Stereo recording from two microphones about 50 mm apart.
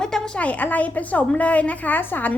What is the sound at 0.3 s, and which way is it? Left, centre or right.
A woman's voice, left.